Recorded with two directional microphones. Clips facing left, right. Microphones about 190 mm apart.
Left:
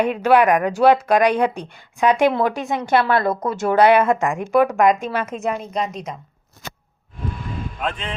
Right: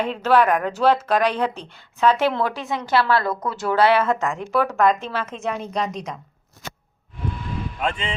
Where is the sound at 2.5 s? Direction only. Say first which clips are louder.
Left 3 dB; 50° left (ahead or behind).